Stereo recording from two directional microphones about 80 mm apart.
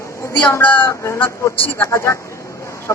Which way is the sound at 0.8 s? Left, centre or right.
Left.